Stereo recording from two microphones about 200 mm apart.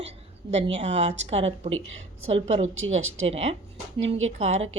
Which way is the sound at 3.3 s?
30° right (ahead or behind).